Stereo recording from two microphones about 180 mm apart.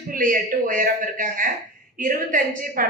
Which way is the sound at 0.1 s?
50° right (ahead or behind).